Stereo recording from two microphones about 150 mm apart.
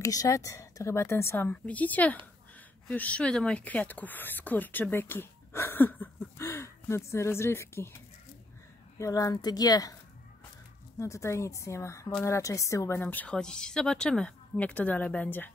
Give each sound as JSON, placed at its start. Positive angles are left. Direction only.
{"t": 0.0, "sound": "speech", "side_deg": 20}
{"t": 11.0, "sound": "speech", "side_deg": 20}